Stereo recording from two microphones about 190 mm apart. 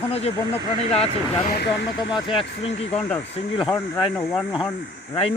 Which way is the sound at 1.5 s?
65° left (ahead or behind).